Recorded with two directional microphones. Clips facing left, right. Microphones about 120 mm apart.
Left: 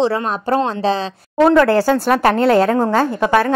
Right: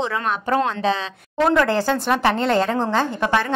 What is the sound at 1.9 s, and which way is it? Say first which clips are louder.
Speech: left 5 dB; 45° left (ahead or behind).